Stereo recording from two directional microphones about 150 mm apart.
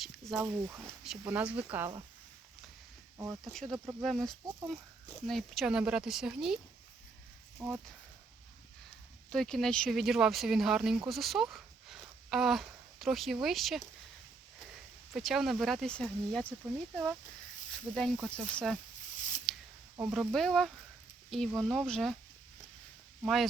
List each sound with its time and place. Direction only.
0.0 s speech: 5° right (ahead or behind)
3.4 s speech: centre (ahead or behind)
9.3 s speech: 5° left (ahead or behind)
15.1 s speech: centre (ahead or behind)
19.5 s a sound: centre (ahead or behind)
20.0 s speech: 5° right (ahead or behind)
23.2 s speech: centre (ahead or behind)